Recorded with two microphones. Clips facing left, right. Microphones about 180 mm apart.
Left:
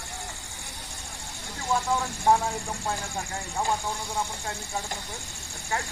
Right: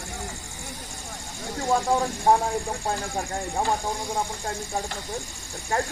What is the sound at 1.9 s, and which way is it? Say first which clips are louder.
Vehicle: right 1 dB; 35° right (ahead or behind).